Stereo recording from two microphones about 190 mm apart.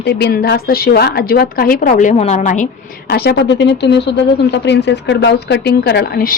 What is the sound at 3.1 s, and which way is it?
Speech, 60° left (ahead or behind).